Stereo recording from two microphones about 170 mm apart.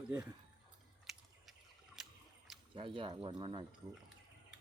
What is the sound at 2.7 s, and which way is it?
Speech, 30° right (ahead or behind).